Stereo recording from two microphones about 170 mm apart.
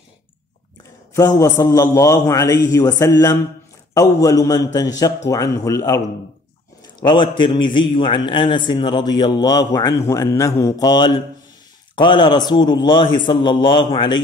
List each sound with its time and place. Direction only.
1.4 s a man's voice: 20° left (ahead or behind)